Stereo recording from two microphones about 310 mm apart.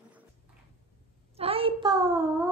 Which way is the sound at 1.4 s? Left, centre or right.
Centre.